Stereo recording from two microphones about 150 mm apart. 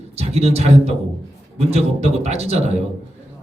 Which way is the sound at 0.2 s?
45° right (ahead or behind).